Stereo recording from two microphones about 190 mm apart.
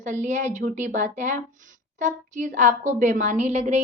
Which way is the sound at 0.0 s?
40° right (ahead or behind).